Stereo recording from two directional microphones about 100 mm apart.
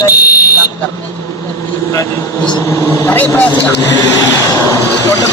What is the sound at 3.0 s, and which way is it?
Speech, 20° left (ahead or behind).